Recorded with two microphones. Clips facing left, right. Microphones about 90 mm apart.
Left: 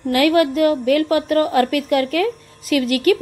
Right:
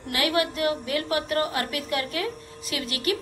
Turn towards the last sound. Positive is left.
turn(degrees=45)  # may be behind; listen again after turning